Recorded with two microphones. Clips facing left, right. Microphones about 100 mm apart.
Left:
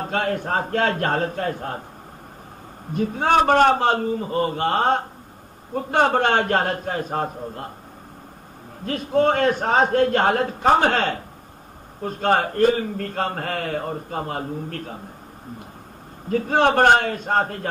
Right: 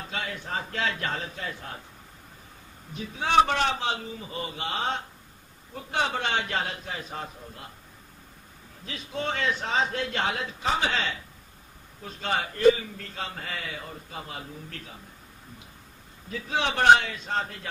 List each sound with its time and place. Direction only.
0.0 s a man's voice: 50° left (ahead or behind)
2.9 s a man's voice: 50° left (ahead or behind)
8.8 s a man's voice: 50° left (ahead or behind)
16.3 s a man's voice: 50° left (ahead or behind)